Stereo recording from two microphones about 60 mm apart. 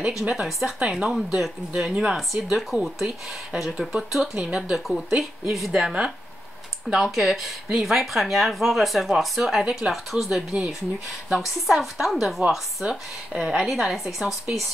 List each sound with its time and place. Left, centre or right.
0.1 s speech: centre
0.7 s speech: centre
1.1 s speech: centre
1.7 s speech: centre
12.8 s speech: right
13.3 s speech: centre